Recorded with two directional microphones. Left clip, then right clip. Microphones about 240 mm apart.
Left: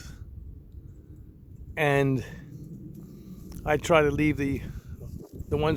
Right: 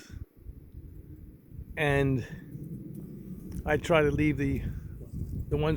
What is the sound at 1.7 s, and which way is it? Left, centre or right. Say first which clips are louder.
Speech: left 3 dB; centre.